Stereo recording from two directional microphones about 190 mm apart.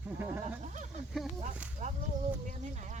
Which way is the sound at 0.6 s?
40° right (ahead or behind).